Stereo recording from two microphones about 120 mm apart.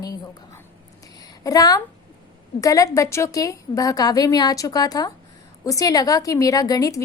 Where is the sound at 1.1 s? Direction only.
30° left (ahead or behind).